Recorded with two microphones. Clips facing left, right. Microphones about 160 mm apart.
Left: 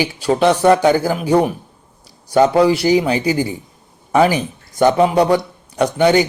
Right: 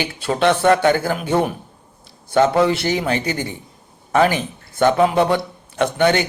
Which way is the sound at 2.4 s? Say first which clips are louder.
Left 3 dB; 10° left (ahead or behind).